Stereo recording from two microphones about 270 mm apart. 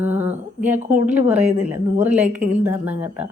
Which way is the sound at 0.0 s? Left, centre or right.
Centre.